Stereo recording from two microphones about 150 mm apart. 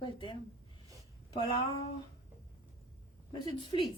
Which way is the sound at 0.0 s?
35° left (ahead or behind).